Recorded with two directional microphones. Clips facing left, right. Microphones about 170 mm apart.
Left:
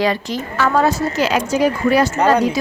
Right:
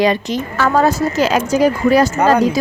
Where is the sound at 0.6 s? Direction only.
40° right (ahead or behind).